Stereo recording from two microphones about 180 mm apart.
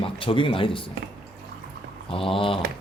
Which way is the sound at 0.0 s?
30° left (ahead or behind).